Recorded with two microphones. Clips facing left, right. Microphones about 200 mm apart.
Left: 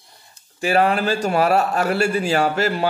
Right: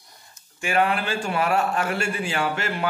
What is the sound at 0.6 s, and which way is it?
A man's voice, 40° left (ahead or behind).